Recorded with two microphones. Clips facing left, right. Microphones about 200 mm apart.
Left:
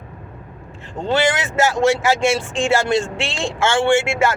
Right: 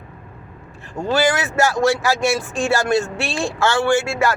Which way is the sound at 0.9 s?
25° left (ahead or behind).